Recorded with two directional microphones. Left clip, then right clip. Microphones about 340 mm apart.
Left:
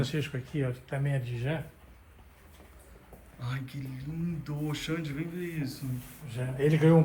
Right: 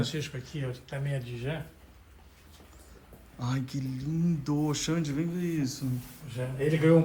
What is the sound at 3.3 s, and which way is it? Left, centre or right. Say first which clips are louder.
Speech: right 6 dB; centre.